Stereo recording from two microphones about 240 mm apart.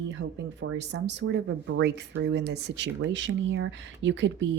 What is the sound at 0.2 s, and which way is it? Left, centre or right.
Speech, right.